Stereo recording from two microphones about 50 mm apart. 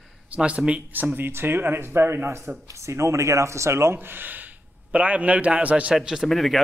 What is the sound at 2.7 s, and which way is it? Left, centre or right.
Speech, right.